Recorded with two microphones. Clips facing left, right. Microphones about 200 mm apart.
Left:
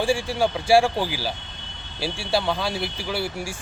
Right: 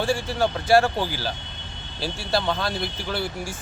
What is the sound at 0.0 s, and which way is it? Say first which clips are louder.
Speech: left 1 dB; 10° left (ahead or behind).